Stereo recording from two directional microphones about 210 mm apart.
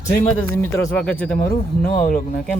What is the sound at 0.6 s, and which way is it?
Speech, 10° left (ahead or behind).